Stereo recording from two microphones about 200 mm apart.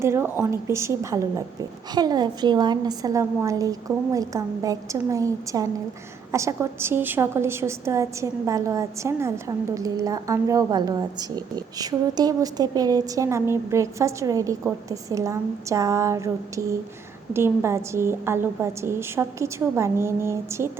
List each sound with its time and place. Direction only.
0.0 s a woman's voice: 10° right (ahead or behind)